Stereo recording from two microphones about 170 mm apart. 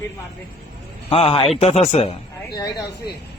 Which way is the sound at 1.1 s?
35° left (ahead or behind).